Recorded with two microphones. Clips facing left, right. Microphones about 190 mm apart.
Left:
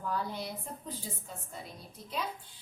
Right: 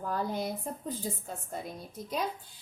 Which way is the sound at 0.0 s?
45° right (ahead or behind).